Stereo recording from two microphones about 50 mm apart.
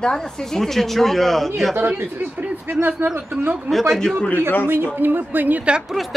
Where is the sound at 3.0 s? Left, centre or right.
Right.